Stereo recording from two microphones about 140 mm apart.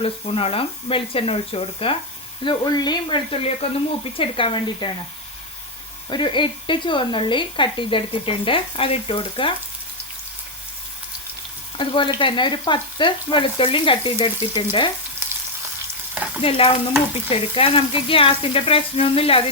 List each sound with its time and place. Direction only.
0.0 s frying: 45° left (ahead or behind)
2.4 s speech: 30° left (ahead or behind)
3.6 s frying: 45° left (ahead or behind)
4.2 s speech: 40° left (ahead or behind)
6.1 s speech: 35° left (ahead or behind)
11.8 s speech: 35° left (ahead or behind)
16.4 s speech: 40° left (ahead or behind)
17.2 s frying: 45° left (ahead or behind)